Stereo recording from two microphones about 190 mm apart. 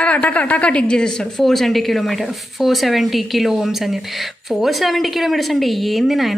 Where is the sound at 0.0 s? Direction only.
5° left (ahead or behind).